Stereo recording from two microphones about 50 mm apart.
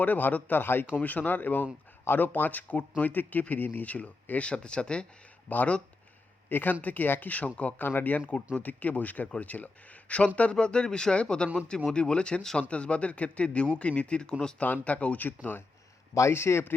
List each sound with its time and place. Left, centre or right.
0.0 s speech: left
0.9 s speech: left
5.5 s speech: left
7.9 s speech: left; by 14.5 s centre
14.6 s speech: left
15.3 s speech: left
16.3 s speech: left